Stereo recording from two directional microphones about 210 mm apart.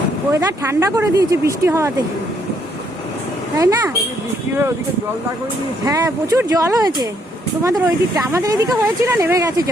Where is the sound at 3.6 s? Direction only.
15° right (ahead or behind).